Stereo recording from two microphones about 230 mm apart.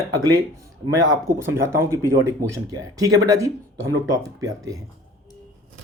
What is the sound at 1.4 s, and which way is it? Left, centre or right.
Speech, centre.